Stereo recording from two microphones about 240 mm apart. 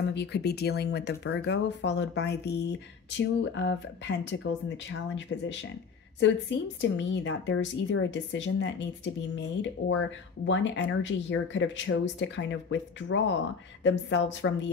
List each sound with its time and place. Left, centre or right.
0.1 s speech: left
6.8 s speech: left